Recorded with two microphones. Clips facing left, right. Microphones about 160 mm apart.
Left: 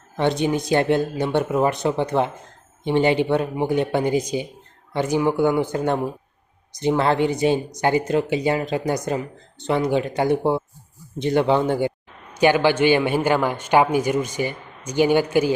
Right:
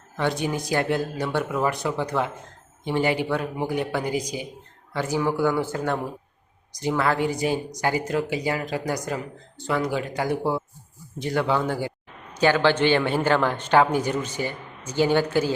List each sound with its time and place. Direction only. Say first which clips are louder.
0.2 s speech: left 5 dB; 25° left (ahead or behind)